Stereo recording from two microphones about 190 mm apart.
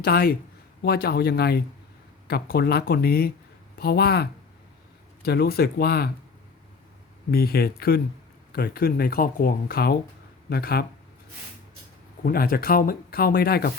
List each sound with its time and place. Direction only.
0.0 s speech: 55° left (ahead or behind)
7.3 s speech: 55° left (ahead or behind)
12.2 s speech: 50° left (ahead or behind)